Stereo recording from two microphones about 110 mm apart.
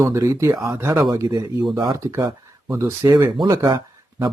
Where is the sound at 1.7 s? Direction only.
30° right (ahead or behind).